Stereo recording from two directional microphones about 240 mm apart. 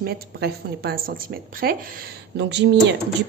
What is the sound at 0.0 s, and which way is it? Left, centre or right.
A woman's voice, right.